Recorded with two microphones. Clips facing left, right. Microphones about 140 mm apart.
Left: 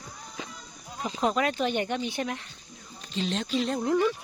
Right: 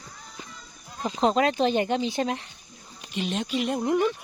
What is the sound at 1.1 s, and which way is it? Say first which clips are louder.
Speech: right 4 dB; 25° right (ahead or behind).